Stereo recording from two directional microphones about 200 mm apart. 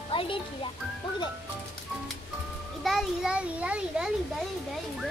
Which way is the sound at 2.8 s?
Centre (ahead or behind).